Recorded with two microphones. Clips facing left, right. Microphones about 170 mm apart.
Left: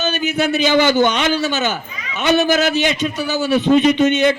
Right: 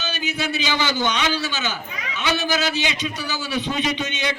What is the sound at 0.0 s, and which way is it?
A man's voice, 50° left (ahead or behind).